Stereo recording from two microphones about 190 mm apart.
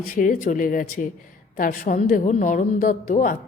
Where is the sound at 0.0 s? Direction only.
45° left (ahead or behind).